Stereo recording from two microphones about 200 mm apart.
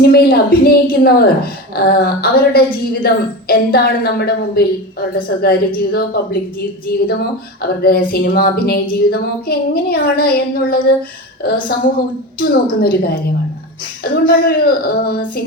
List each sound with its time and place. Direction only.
0.0 s a woman's voice: 50° left (ahead or behind)